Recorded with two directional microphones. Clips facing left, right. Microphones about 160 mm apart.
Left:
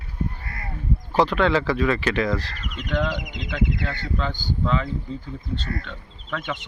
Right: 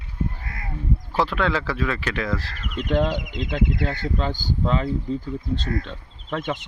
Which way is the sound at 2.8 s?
30° right (ahead or behind).